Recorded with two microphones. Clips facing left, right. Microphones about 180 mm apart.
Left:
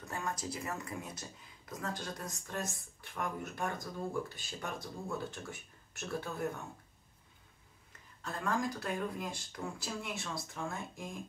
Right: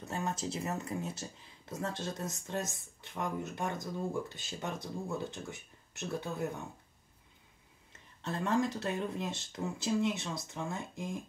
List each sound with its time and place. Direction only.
0.0 s speech: 25° right (ahead or behind)
7.9 s speech: 25° right (ahead or behind)